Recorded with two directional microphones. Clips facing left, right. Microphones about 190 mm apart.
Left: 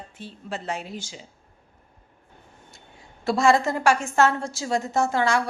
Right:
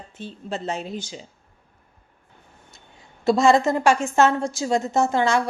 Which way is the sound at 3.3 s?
20° right (ahead or behind).